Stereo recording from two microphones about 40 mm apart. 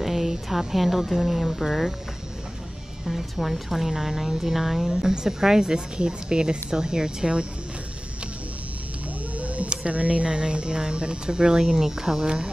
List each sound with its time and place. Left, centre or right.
0.0 s speech: centre
3.1 s speech: centre; by 7.4 s right
9.4 s a sound: right
9.7 s speech: right
10.3 s speech: right